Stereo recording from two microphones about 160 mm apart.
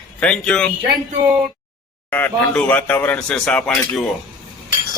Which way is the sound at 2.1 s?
10° left (ahead or behind).